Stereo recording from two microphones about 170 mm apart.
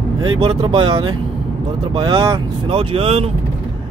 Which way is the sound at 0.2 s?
25° right (ahead or behind).